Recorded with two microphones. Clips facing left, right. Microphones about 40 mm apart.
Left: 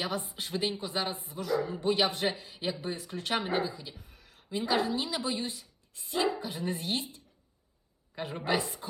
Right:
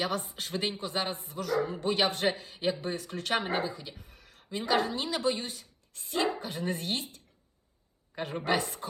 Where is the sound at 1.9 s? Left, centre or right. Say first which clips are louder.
Right 1 dB; right.